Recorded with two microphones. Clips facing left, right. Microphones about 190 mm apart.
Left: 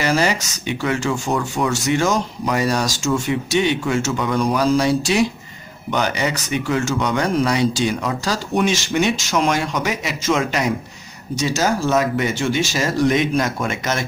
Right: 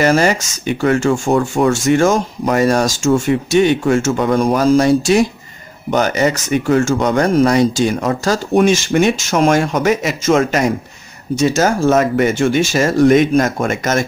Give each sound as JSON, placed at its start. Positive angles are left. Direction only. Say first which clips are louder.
{"t": 0.0, "sound": "speech", "louder": "right 6 dB", "side_deg": -50}